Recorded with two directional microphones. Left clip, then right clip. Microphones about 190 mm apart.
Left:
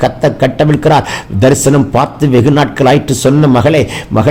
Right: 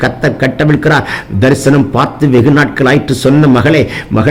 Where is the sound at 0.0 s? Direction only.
10° left (ahead or behind).